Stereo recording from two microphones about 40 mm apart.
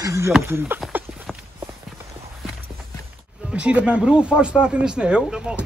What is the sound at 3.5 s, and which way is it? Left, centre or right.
Speech, right.